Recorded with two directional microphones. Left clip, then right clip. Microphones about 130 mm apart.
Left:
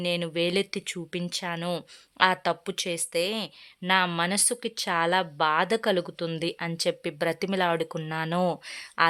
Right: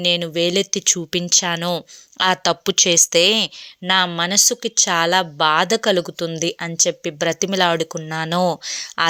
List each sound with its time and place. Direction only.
0.0 s a woman's voice: 30° right (ahead or behind)